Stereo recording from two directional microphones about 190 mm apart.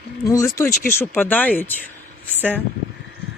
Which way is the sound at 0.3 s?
15° left (ahead or behind).